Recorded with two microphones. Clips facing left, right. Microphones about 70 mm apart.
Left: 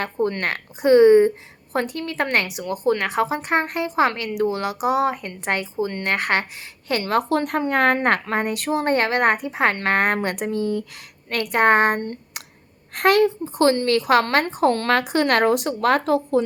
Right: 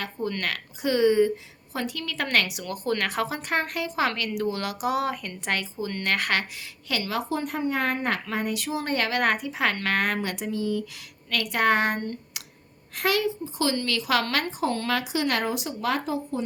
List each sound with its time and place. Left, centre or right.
0.0 s a woman's voice: left
6.8 s a woman's voice: left
12.9 s a woman's voice: left